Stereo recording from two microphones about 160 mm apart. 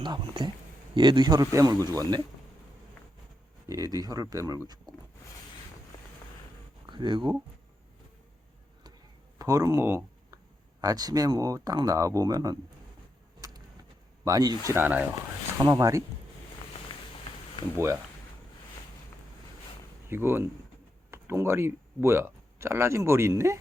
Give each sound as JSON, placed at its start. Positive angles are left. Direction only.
{"t": 0.0, "sound": "speech", "side_deg": -30}
{"t": 3.7, "sound": "speech", "side_deg": -20}
{"t": 6.8, "sound": "speech", "side_deg": -30}
{"t": 9.4, "sound": "speech", "side_deg": -20}
{"t": 14.3, "sound": "speech", "side_deg": -25}
{"t": 14.7, "sound": "speech", "side_deg": -10}
{"t": 15.1, "sound": "speech", "side_deg": -25}
{"t": 17.7, "sound": "speech", "side_deg": -15}
{"t": 20.1, "sound": "speech", "side_deg": -15}